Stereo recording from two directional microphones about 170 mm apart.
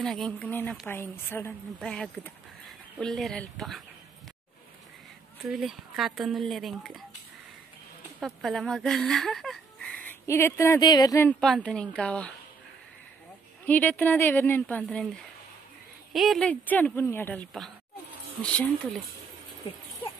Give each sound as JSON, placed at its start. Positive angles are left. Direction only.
{"t": 0.0, "sound": "a woman's voice", "side_deg": 5}
{"t": 5.5, "sound": "speech", "side_deg": 0}
{"t": 8.2, "sound": "speech", "side_deg": 0}
{"t": 11.2, "sound": "speech", "side_deg": 5}
{"t": 13.7, "sound": "a woman's voice", "side_deg": 10}
{"t": 16.1, "sound": "a woman's voice", "side_deg": 0}